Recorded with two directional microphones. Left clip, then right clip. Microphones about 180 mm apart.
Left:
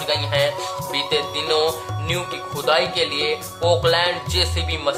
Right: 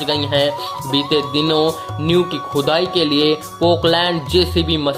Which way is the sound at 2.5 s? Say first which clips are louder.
Right 2 dB; 30° right (ahead or behind).